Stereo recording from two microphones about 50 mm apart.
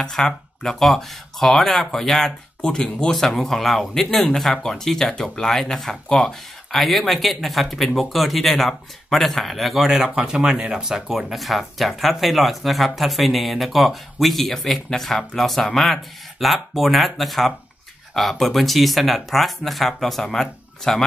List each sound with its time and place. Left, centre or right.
0.0 s speech: centre
6.8 s speech: centre
9.8 s speech: centre